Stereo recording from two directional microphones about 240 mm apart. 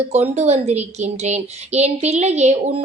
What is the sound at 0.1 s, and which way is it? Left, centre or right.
Speech, right.